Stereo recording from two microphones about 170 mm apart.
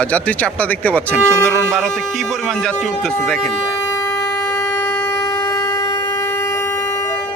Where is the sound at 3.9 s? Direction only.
15° left (ahead or behind).